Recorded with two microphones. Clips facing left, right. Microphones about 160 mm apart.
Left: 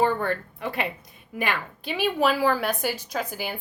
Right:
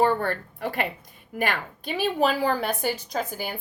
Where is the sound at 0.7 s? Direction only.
45° right (ahead or behind).